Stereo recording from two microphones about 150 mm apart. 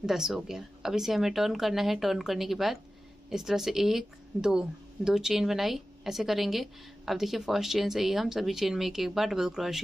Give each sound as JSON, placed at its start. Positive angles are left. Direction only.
{"t": 0.0, "sound": "speech", "side_deg": 0}